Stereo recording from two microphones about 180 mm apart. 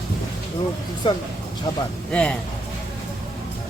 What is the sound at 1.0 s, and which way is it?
Speech, 25° left (ahead or behind).